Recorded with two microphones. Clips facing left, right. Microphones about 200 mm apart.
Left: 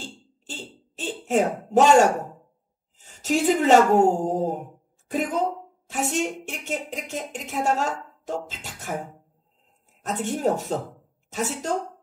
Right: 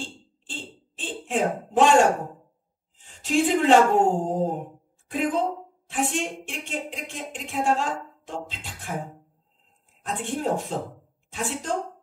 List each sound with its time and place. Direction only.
0.0 s a sound: 40° left (ahead or behind)
3.0 s a woman's voice: 40° left (ahead or behind)
10.0 s a woman's voice: 40° left (ahead or behind)